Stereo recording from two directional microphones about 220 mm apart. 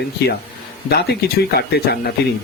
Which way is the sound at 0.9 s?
45° left (ahead or behind).